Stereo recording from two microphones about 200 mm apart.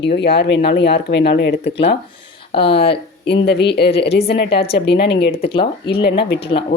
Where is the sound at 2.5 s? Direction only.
25° left (ahead or behind).